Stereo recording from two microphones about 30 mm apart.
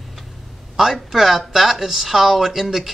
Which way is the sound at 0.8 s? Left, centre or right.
Centre.